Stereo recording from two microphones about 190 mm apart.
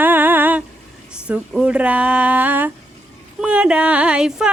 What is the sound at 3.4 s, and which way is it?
Speech, 5° right (ahead or behind).